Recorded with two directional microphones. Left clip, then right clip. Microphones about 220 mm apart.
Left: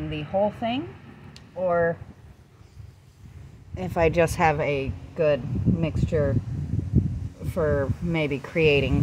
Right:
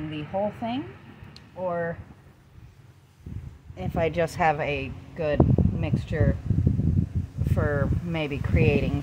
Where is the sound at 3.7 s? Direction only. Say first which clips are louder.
Left 4 dB; 25° left (ahead or behind).